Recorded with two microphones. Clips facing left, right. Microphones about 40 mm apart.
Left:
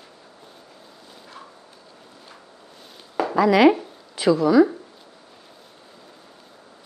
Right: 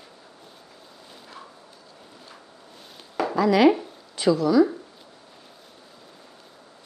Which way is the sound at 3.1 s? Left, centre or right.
Centre.